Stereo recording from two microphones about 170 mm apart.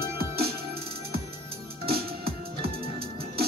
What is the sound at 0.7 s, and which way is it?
Music, 65° right (ahead or behind).